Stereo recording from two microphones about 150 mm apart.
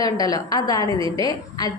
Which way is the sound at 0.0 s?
25° left (ahead or behind).